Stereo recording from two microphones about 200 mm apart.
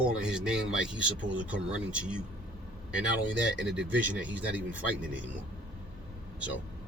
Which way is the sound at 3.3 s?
65° right (ahead or behind).